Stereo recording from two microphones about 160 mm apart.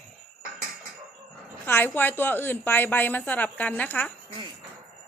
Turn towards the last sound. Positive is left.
turn(degrees=10)  # may be behind; listen again after turning